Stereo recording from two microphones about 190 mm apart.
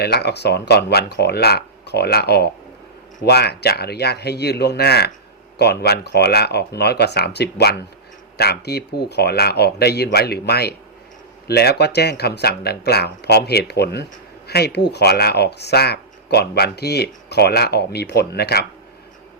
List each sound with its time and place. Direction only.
0.0 s speech: 60° left (ahead or behind)